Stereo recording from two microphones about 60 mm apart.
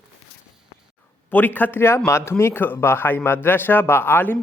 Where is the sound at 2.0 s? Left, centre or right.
Left.